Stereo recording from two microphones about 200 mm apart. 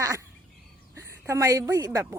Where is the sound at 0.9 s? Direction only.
15° right (ahead or behind).